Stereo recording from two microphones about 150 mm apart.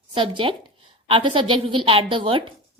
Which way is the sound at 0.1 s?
35° right (ahead or behind).